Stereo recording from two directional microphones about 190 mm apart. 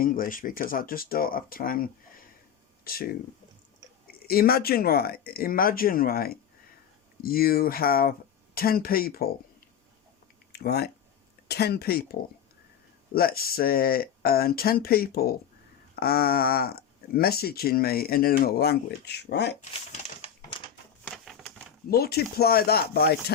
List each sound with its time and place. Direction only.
0.0 s speech: 45° left (ahead or behind)
10.5 s speech: 55° left (ahead or behind)
19.9 s typewriter: 35° left (ahead or behind)
21.1 s typewriter: centre (ahead or behind)
21.8 s speech: 55° left (ahead or behind)